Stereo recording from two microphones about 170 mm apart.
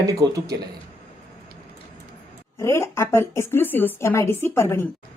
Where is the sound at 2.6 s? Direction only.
15° left (ahead or behind).